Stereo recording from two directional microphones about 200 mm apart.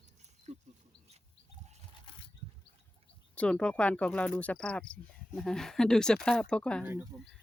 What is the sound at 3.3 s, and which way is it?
Speech, 5° left (ahead or behind).